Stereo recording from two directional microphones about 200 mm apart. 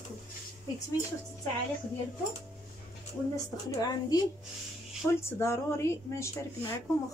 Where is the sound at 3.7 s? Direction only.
20° left (ahead or behind).